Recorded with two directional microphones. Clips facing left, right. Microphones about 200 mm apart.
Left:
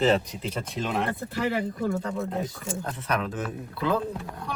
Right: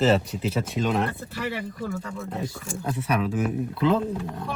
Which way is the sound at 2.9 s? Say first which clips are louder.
Right 5 dB; 10° right (ahead or behind).